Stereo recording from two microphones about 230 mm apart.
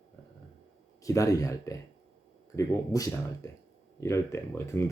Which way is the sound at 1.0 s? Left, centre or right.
Centre.